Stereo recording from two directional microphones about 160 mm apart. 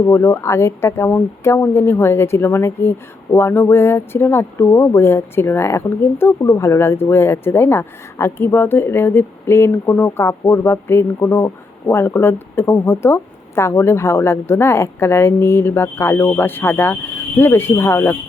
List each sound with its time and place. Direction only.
0.0 s speech: 15° left (ahead or behind)